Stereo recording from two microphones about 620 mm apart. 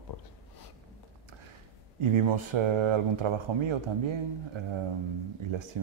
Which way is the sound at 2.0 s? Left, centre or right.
Right.